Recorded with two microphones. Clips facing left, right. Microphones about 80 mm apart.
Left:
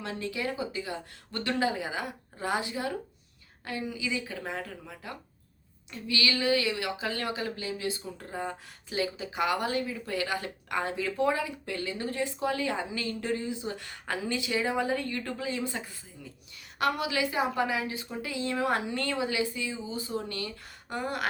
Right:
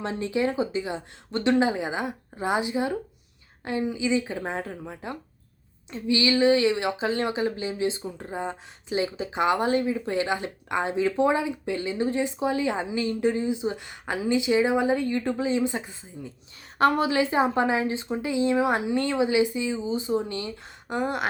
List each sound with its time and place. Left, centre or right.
0.0 s a woman's voice: right
16.7 s a woman's voice: right